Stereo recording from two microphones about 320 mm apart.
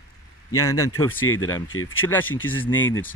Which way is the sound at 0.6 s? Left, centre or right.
Centre.